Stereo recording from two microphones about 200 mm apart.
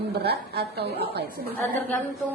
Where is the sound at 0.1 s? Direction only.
55° right (ahead or behind).